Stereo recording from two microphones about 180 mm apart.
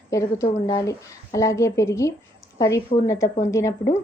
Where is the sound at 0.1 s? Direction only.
15° left (ahead or behind).